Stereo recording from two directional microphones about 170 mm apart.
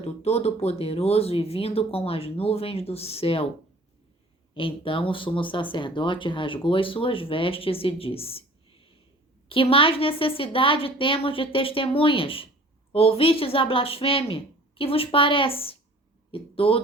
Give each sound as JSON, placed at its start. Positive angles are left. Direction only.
{"t": 0.0, "sound": "speech", "side_deg": 35}
{"t": 4.5, "sound": "speech", "side_deg": 30}